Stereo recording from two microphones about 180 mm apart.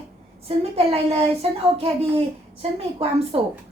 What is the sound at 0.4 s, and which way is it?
Speech, 35° right (ahead or behind).